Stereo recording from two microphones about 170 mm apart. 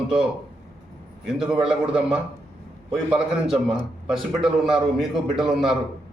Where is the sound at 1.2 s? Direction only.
5° right (ahead or behind).